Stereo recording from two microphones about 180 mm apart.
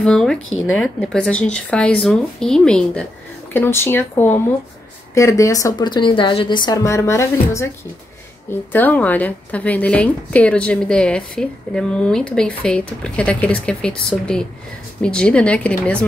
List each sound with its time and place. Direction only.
0.0 s a woman's voice: 5° left (ahead or behind)
8.7 s a woman's voice: 10° left (ahead or behind)